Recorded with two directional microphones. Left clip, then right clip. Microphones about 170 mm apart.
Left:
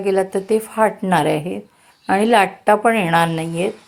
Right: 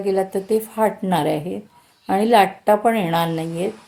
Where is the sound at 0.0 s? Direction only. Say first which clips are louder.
Left 2 dB; 15° left (ahead or behind).